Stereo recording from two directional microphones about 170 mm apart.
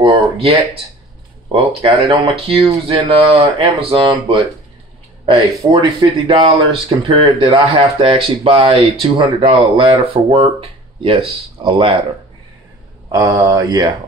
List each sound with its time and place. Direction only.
0.0 s a man's voice: 30° right (ahead or behind)
13.1 s a man's voice: 20° right (ahead or behind)